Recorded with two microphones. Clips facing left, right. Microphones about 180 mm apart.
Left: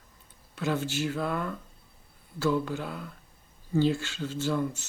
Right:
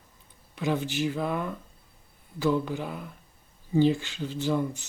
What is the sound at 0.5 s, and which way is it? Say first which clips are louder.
Speech: right 1 dB; 15° right (ahead or behind).